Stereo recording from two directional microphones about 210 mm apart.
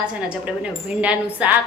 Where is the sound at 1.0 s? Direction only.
5° right (ahead or behind).